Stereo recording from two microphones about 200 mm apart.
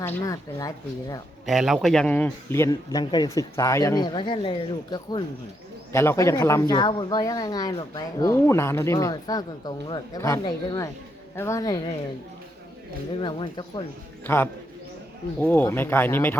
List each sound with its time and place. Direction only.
0.0 s a woman's voice: 15° left (ahead or behind)
1.5 s a woman's voice: centre (ahead or behind); by 11.8 s 15° left (ahead or behind)
13.1 s speech: 25° left (ahead or behind)
14.3 s a woman's voice: 10° left (ahead or behind)